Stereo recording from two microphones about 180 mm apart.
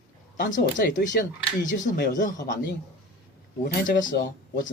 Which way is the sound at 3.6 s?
50° left (ahead or behind).